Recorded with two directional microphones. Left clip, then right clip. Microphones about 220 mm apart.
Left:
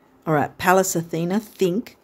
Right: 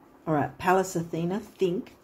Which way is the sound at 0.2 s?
50° left (ahead or behind).